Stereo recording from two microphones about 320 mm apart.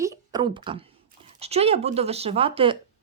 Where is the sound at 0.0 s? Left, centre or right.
Centre.